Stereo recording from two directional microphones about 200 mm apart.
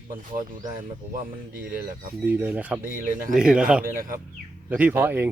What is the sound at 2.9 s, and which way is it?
Speech, 45° right (ahead or behind).